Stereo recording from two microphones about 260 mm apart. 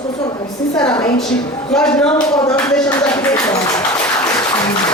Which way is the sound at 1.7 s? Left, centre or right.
Centre.